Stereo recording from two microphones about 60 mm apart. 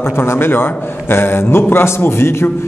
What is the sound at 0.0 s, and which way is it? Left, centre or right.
A man's voice, left.